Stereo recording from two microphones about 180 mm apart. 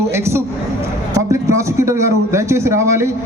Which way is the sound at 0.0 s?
15° right (ahead or behind).